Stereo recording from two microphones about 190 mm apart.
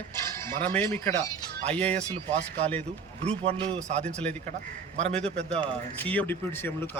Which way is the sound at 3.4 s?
30° right (ahead or behind).